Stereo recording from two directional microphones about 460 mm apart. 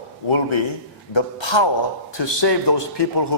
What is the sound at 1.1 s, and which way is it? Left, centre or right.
A man's voice, left.